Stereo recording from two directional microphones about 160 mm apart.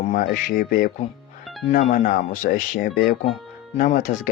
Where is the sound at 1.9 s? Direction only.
55° left (ahead or behind).